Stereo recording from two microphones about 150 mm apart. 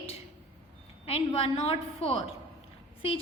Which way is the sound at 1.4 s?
40° left (ahead or behind).